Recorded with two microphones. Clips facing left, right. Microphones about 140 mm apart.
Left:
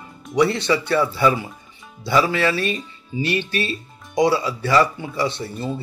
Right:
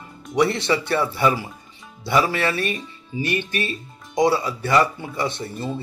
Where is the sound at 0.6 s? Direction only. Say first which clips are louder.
Left 2 dB; 25° right (ahead or behind).